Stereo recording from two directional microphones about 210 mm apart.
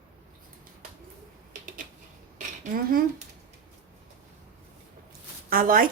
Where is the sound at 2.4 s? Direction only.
40° right (ahead or behind).